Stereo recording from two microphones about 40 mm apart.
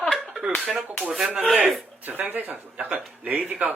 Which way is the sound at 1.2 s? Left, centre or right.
Right.